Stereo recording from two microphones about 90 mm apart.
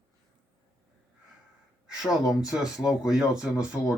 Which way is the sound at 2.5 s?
5° right (ahead or behind).